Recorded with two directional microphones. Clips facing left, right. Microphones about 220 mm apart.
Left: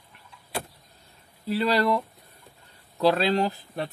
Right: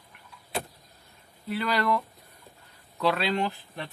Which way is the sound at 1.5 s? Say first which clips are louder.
Left 4 dB; 30° left (ahead or behind).